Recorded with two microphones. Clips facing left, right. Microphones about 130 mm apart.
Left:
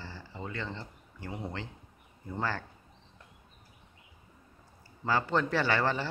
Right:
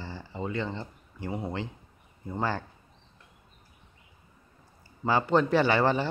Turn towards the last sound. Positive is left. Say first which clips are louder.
# right 5 dB
turn(degrees=-15)  # may be behind; listen again after turning